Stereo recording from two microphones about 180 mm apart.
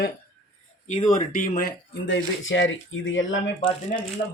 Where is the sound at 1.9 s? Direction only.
85° left.